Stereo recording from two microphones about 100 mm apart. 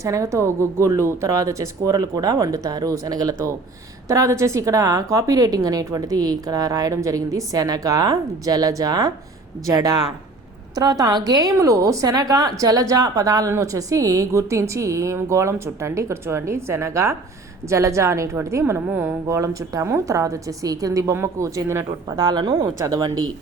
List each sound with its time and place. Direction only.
0.0 s a woman's voice: 30° right (ahead or behind)
19.4 s a woman's voice: 30° right (ahead or behind)
22.1 s a woman's voice: 45° right (ahead or behind)